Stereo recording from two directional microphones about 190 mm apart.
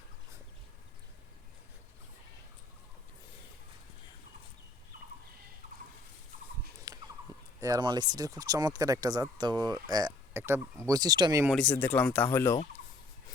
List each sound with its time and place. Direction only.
6.9 s a sound: 20° right (ahead or behind)
7.6 s speech: 20° right (ahead or behind)
11.5 s speech: 10° left (ahead or behind)